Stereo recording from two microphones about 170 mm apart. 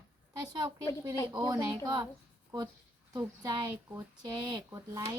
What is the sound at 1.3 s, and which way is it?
Speech, 25° right (ahead or behind).